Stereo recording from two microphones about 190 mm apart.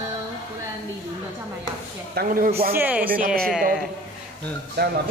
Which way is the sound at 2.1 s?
50° right (ahead or behind).